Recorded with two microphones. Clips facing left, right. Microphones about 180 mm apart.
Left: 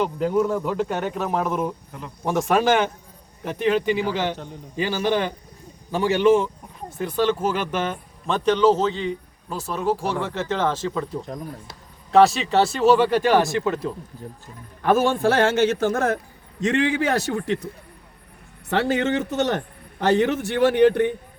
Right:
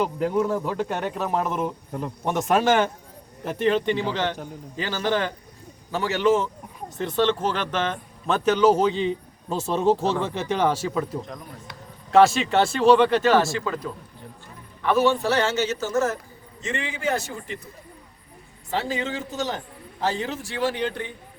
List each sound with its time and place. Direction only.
0.0 s speech: centre (ahead or behind)
8.3 s a man's voice: 5° right (ahead or behind); by 13.9 s 25° left (ahead or behind)
14.8 s a man's voice: 50° left (ahead or behind); by 17.7 s 70° left (ahead or behind)
18.7 s a man's voice: 70° left (ahead or behind)